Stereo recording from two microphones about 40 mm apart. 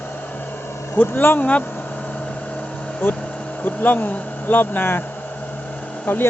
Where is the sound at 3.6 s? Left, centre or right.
Left.